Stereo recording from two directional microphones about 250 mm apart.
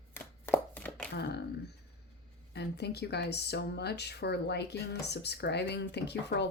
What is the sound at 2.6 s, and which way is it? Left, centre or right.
Speech, left.